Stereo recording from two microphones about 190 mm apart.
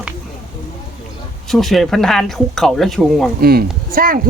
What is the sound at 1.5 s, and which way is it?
Speech, centre (ahead or behind).